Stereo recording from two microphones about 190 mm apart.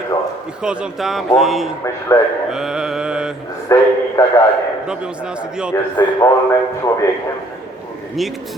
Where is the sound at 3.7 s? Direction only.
15° left (ahead or behind).